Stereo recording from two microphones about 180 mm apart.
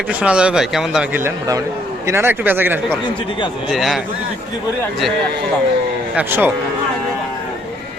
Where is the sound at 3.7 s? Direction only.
Centre (ahead or behind).